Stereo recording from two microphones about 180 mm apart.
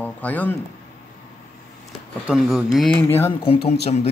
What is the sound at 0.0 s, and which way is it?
Speech, 10° left (ahead or behind).